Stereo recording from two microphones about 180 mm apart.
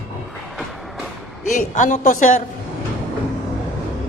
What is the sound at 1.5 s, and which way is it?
Speech, 45° left (ahead or behind).